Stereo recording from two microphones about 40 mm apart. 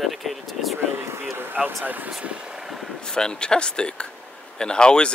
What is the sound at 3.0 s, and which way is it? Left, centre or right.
Speech, centre.